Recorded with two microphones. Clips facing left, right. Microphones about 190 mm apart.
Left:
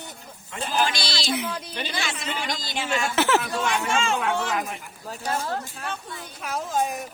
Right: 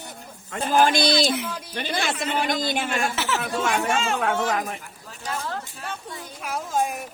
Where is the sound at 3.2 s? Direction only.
55° left (ahead or behind).